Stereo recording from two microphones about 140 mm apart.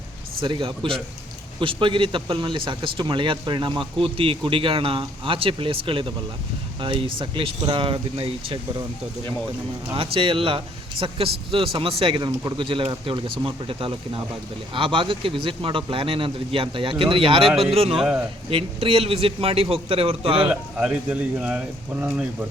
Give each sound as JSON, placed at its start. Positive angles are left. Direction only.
{"t": 0.3, "sound": "a man's voice", "side_deg": -35}
{"t": 9.9, "sound": "a man's voice", "side_deg": -40}
{"t": 18.0, "sound": "speech", "side_deg": -10}
{"t": 18.5, "sound": "a man's voice", "side_deg": -40}
{"t": 20.5, "sound": "speech", "side_deg": -5}